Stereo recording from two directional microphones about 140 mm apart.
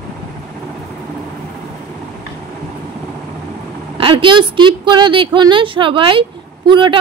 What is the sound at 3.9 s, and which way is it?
Speech, 40° right (ahead or behind).